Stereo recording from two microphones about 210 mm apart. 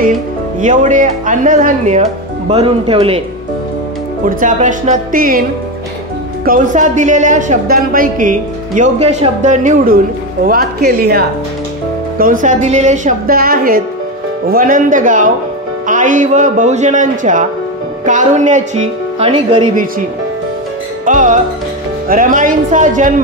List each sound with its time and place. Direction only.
0.6 s speech: 35° right (ahead or behind)
4.4 s speech: 40° right (ahead or behind)
6.4 s a woman's voice: 40° right (ahead or behind)
21.0 s music: 40° right (ahead or behind)
22.0 s speech: 40° right (ahead or behind)